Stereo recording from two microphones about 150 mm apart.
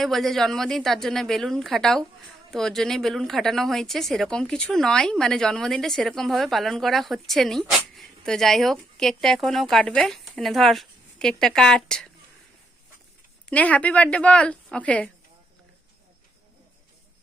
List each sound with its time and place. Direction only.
0.0 s speech: centre (ahead or behind)
13.5 s a woman's voice: 10° left (ahead or behind)